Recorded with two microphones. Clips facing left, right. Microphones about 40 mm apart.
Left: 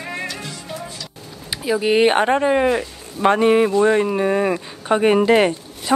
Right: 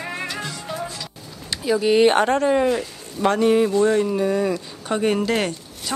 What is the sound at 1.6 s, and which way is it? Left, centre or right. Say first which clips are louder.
Speech: even; centre.